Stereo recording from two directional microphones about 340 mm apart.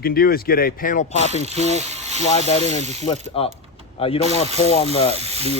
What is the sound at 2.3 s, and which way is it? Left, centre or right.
Speech, centre.